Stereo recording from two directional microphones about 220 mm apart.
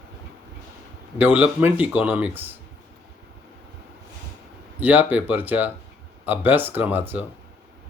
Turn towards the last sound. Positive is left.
turn(degrees=-10)  # may be behind; listen again after turning